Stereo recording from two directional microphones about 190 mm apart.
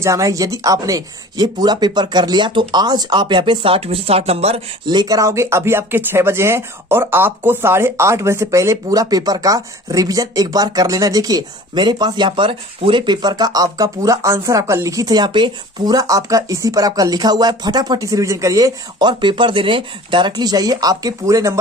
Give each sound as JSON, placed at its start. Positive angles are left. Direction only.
{"t": 0.0, "sound": "speech", "side_deg": -15}